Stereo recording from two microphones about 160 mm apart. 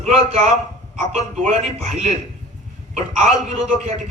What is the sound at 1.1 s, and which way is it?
Speech, 45° right (ahead or behind).